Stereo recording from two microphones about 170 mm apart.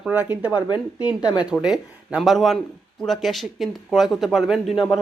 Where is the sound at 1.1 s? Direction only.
25° left (ahead or behind).